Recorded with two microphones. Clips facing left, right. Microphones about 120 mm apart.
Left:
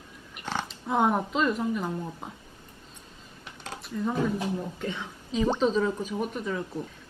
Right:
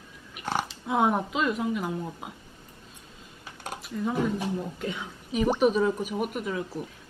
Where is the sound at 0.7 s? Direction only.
5° right (ahead or behind).